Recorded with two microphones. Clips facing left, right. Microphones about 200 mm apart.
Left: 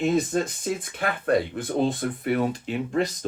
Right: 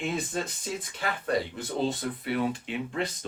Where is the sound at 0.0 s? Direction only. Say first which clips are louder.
Left 8 dB; 40° left (ahead or behind).